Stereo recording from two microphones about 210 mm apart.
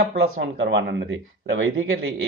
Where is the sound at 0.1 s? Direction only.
60° right (ahead or behind).